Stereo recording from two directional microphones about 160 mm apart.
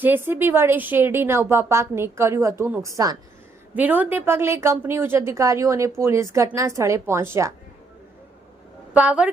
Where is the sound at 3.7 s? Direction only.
10° right (ahead or behind).